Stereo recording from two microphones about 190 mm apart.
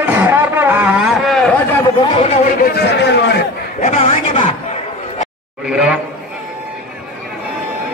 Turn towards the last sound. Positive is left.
turn(degrees=-5)  # may be behind; listen again after turning